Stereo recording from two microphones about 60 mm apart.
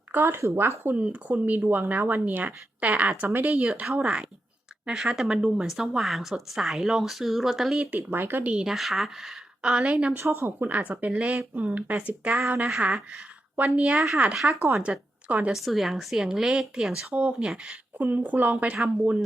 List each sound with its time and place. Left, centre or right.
0.1 s speech: right
0.9 s a woman's voice: right; by 7.8 s centre
7.8 s speech: right
8.1 s speech: right
8.5 s a woman's voice: centre
9.6 s a woman's voice: centre
10.2 s a woman's voice: right
15.5 s a woman's voice: centre
17.9 s speech: right